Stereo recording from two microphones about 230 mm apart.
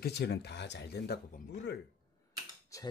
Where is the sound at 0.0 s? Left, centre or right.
Left.